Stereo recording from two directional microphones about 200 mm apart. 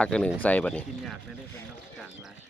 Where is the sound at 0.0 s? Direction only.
5° left (ahead or behind).